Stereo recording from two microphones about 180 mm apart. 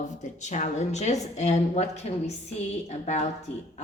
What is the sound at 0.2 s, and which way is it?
A woman's voice, 40° left (ahead or behind).